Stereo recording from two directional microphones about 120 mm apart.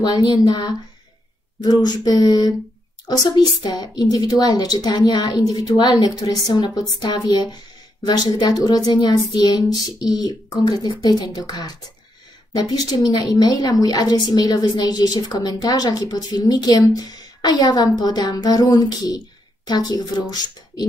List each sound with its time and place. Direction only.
0.3 s a woman's voice: 35° left (ahead or behind)